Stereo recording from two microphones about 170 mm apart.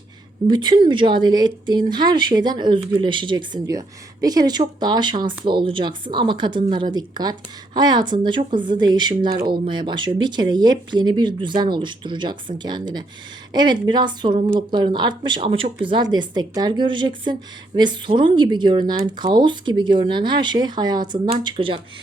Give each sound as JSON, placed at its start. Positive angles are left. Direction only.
{"t": 0.4, "sound": "speech", "side_deg": -25}
{"t": 9.3, "sound": "speech", "side_deg": -65}
{"t": 9.6, "sound": "speech", "side_deg": -25}